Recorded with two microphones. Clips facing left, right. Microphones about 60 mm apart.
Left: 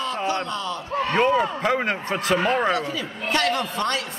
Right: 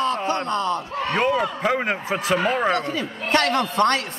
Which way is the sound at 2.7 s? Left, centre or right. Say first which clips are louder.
Right 1 dB; right.